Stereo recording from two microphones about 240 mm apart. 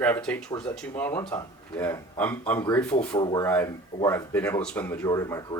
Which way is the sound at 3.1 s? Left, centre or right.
Centre.